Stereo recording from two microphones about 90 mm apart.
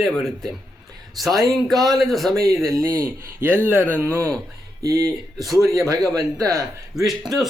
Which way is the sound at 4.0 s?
25° right (ahead or behind).